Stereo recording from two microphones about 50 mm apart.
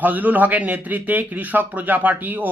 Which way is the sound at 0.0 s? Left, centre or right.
Right.